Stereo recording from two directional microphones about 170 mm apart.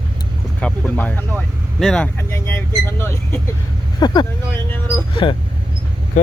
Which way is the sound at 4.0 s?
25° left (ahead or behind).